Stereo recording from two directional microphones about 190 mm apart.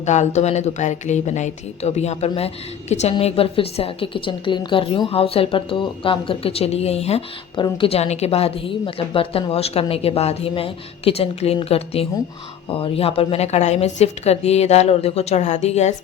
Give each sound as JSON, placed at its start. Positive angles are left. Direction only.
{"t": 0.0, "sound": "a woman's voice", "side_deg": 35}